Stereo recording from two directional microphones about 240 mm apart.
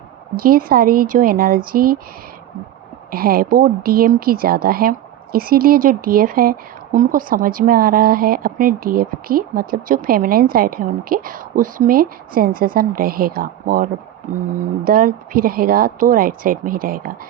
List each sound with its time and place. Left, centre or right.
0.3 s speech: right
3.1 s speech: right